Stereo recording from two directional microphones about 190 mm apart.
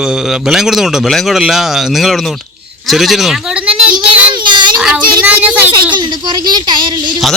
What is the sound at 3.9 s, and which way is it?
Child singing, 25° right (ahead or behind).